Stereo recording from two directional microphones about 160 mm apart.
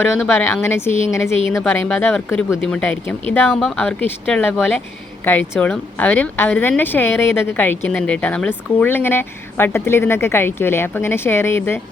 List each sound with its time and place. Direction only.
0.2 s a woman's voice: 15° left (ahead or behind)